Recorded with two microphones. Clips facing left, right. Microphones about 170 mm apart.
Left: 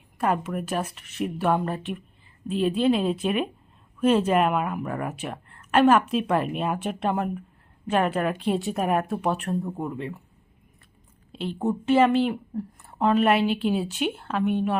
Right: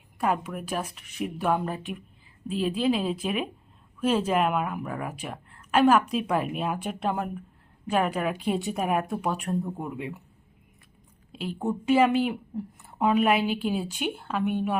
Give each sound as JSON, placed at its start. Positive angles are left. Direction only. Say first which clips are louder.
{"t": 0.2, "sound": "a woman's voice", "louder": "left 2 dB", "side_deg": 0}
{"t": 11.3, "sound": "a sound", "louder": "left 2 dB", "side_deg": -5}
{"t": 11.9, "sound": "a woman's voice", "louder": "left 2 dB", "side_deg": -10}